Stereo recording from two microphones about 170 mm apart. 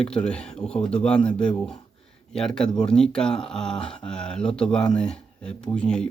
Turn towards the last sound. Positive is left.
turn(degrees=5)  # may be behind; listen again after turning